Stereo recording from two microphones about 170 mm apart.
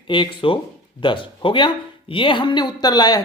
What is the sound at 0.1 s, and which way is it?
A man's voice, 30° left (ahead or behind).